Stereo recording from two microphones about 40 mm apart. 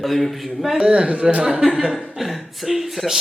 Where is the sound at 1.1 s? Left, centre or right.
Right.